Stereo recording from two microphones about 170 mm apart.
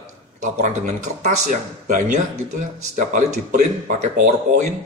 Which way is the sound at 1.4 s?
45° right (ahead or behind).